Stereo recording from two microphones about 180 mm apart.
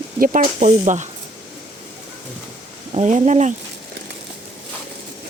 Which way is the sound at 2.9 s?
40° right (ahead or behind).